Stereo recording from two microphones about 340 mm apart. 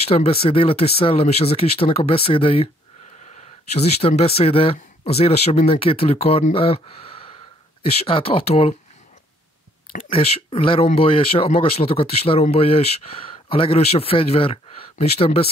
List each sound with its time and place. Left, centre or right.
0.1 s speech: centre
3.7 s speech: centre
9.9 s speech: centre